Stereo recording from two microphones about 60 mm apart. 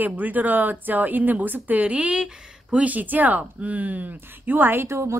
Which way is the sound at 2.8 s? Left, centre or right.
Right.